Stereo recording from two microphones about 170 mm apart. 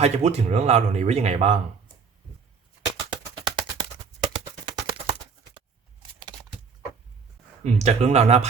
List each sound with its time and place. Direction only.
0.0 s speech: 40° right (ahead or behind)
3.1 s music: 25° right (ahead or behind)
7.6 s speech: 40° right (ahead or behind)